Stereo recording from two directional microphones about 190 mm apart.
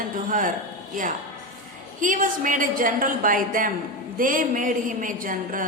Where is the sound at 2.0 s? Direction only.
45° right (ahead or behind).